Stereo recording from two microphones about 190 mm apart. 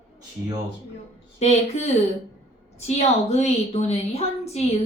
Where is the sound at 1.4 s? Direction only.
35° left (ahead or behind).